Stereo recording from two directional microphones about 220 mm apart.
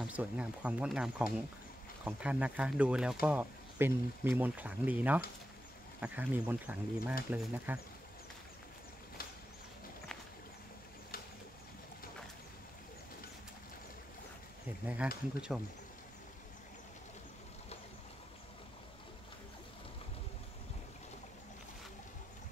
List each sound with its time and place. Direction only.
0.0 s speech: 5° right (ahead or behind)
15.0 s speech: 5° right (ahead or behind)